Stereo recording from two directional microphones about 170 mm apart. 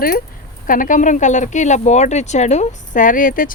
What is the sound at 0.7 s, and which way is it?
Speech, 50° left (ahead or behind).